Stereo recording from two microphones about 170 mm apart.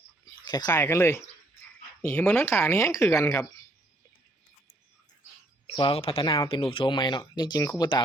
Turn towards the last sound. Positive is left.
turn(degrees=20)  # may be behind; listen again after turning